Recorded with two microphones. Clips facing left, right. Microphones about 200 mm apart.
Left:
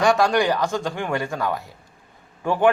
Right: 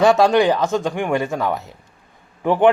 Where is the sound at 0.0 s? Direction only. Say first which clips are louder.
Right 5 dB; 20° right (ahead or behind).